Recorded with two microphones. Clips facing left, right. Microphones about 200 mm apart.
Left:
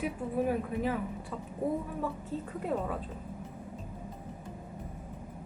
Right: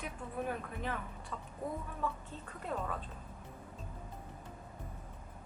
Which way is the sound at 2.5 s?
15° left (ahead or behind).